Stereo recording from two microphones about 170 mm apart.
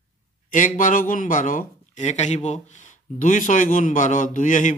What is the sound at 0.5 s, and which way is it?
A man's voice, 50° left (ahead or behind).